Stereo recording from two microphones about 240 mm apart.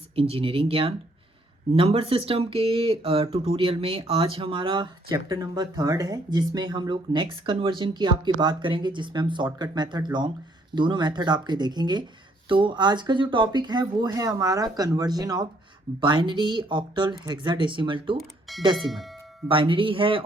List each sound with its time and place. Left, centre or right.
0.2 s speech: right
18.2 s speech: centre
19.5 s speech: right